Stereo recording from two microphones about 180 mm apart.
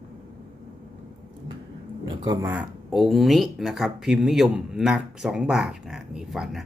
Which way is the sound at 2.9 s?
Centre (ahead or behind).